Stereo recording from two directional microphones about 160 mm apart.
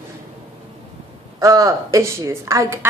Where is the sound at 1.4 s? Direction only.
20° right (ahead or behind).